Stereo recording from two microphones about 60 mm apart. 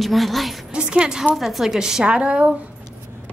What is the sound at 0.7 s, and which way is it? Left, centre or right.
Speech, centre.